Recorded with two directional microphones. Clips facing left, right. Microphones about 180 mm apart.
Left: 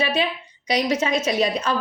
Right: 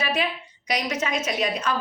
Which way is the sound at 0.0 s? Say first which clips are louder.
Left 4 dB; 25° left (ahead or behind).